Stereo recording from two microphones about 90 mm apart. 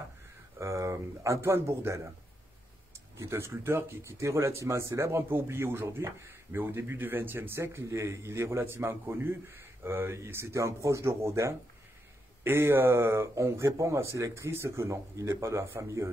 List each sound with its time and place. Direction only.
0.6 s speech: 35° right (ahead or behind)
3.2 s speech: 30° right (ahead or behind)